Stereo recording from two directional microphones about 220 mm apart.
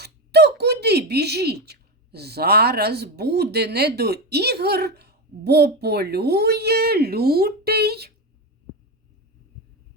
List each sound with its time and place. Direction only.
0.0 s speech: 50° right (ahead or behind)